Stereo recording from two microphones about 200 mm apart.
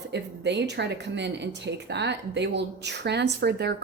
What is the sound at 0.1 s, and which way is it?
Speech, 60° right (ahead or behind).